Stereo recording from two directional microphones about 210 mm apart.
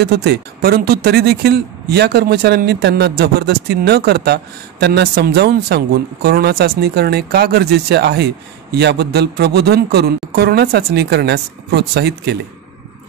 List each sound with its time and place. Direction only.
0.0 s speech: 50° right (ahead or behind)